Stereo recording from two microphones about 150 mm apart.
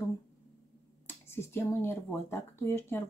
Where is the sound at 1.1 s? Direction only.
15° left (ahead or behind).